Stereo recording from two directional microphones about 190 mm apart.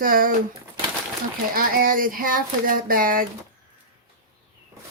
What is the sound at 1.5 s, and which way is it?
Speech, 50° right (ahead or behind).